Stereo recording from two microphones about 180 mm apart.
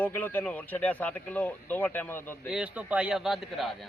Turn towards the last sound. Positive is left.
turn(degrees=0)  # may be behind; listen again after turning